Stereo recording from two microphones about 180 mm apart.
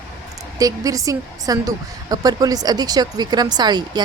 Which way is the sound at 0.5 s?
20° right (ahead or behind).